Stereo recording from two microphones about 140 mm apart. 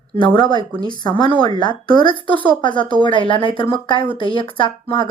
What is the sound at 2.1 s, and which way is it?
Speech, 35° right (ahead or behind).